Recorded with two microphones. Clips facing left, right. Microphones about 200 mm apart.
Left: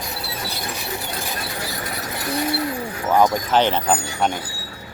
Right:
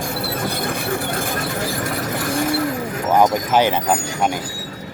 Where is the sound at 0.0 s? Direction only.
50° right (ahead or behind).